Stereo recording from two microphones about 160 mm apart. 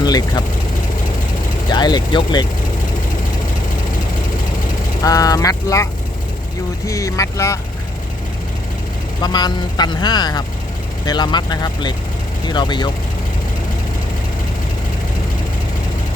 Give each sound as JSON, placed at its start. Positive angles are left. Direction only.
{"t": 0.0, "sound": "speech", "side_deg": 25}
{"t": 1.7, "sound": "speech", "side_deg": 25}
{"t": 5.0, "sound": "speech", "side_deg": 20}
{"t": 9.2, "sound": "speech", "side_deg": 25}